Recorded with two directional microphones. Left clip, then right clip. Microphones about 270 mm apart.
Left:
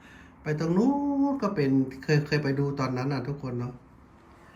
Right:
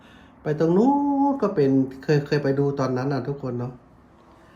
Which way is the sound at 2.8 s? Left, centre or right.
Right.